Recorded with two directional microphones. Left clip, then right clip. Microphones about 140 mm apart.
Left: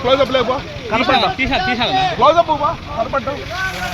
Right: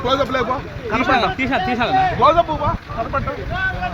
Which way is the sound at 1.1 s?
5° right (ahead or behind).